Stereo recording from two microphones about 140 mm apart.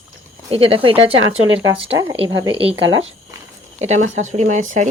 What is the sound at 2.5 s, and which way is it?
Speech, 40° right (ahead or behind).